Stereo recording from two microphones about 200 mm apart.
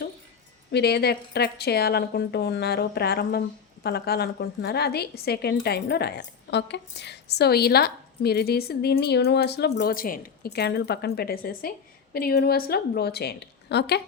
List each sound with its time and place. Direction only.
0.7 s a woman's voice: 55° left (ahead or behind)